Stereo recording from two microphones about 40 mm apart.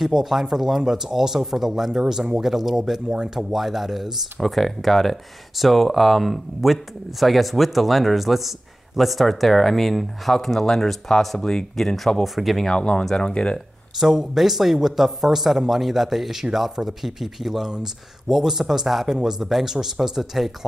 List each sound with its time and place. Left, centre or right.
0.0 s speech: centre
12.6 s speech: left
13.9 s speech: centre